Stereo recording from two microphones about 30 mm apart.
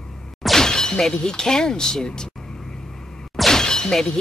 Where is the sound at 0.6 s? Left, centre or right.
Left.